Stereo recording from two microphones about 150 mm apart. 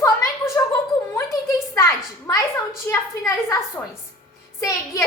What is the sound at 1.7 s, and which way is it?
A woman's voice, 20° left (ahead or behind).